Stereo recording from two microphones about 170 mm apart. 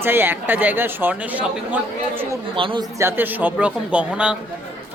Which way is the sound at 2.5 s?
30° right (ahead or behind).